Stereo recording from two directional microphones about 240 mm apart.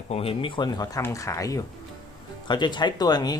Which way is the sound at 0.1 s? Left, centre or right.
Left.